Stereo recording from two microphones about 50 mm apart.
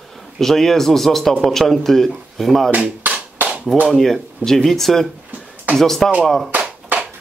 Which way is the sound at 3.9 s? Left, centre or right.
Centre.